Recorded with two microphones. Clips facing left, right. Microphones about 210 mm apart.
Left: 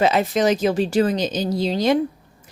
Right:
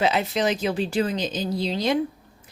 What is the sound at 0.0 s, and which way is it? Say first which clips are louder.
Speech: left 5 dB; 45° left (ahead or behind).